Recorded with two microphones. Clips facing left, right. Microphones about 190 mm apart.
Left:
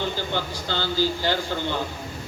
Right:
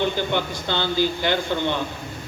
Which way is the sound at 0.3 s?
60° right (ahead or behind).